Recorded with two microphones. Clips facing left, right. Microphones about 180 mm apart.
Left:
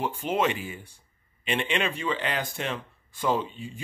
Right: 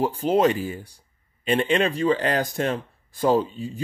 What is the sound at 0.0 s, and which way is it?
Speech, 35° right (ahead or behind).